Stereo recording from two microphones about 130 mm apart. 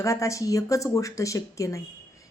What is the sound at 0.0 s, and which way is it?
Speech, 25° left (ahead or behind).